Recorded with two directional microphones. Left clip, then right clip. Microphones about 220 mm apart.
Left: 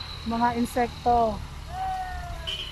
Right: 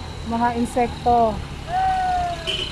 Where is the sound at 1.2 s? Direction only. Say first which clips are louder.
Right 6 dB; 40° right (ahead or behind).